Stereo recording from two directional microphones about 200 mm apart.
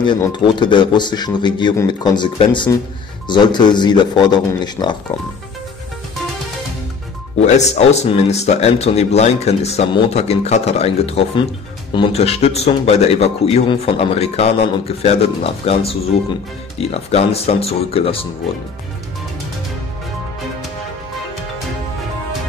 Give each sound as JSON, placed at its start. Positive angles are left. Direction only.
{"t": 0.0, "sound": "speech", "side_deg": 25}
{"t": 7.4, "sound": "speech", "side_deg": 35}